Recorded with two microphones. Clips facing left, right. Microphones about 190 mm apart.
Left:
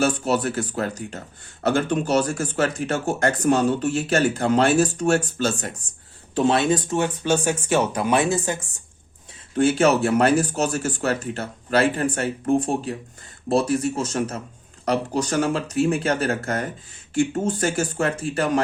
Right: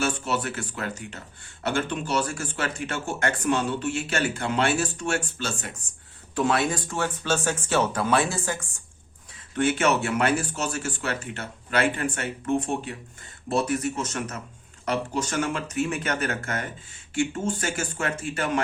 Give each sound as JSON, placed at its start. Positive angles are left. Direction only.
{"t": 0.0, "sound": "speech", "side_deg": 40}
{"t": 6.3, "sound": "speech", "side_deg": 25}
{"t": 9.6, "sound": "speech", "side_deg": 30}